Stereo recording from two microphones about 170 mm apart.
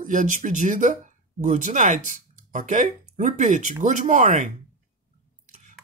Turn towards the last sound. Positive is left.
turn(degrees=-50)  # may be behind; listen again after turning